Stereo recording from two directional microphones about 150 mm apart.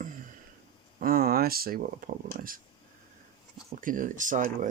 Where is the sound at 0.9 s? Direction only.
75° right (ahead or behind).